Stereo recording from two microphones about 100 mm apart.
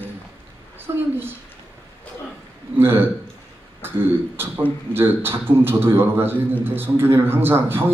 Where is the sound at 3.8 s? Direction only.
20° right (ahead or behind).